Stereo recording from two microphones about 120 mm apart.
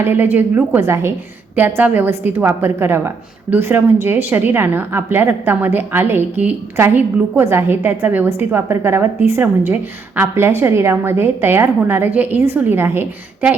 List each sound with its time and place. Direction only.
0.0 s a woman's voice: 20° right (ahead or behind)